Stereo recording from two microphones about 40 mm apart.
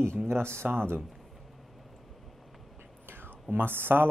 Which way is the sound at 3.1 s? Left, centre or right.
Right.